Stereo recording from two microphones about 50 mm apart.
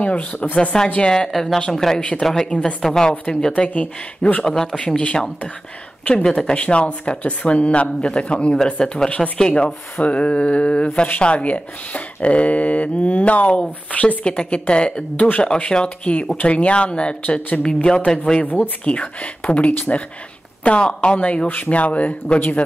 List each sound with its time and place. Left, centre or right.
0.0 s a sound: left
0.4 s speech: left
1.1 s speech: centre
2.0 s speech: left
18.4 s speech: left
18.9 s speech: left